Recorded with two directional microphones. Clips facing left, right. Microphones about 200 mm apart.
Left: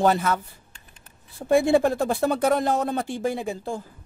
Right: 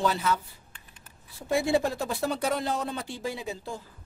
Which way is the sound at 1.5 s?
55° left (ahead or behind).